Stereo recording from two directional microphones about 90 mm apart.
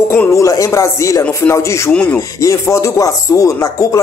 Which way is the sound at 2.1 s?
35° left (ahead or behind).